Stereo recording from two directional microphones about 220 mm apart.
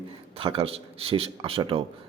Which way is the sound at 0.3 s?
25° right (ahead or behind).